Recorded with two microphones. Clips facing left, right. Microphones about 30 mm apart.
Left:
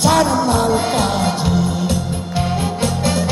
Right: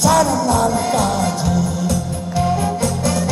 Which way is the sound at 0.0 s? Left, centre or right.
Left.